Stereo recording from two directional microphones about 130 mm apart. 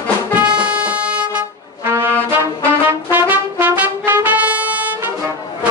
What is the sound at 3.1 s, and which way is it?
Trumpet, 15° right (ahead or behind).